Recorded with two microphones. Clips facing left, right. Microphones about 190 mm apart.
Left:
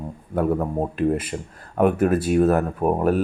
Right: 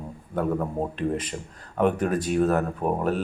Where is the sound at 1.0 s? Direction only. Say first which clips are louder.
Left 7 dB; 5° left (ahead or behind).